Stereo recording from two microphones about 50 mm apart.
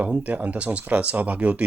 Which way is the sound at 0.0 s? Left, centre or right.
Right.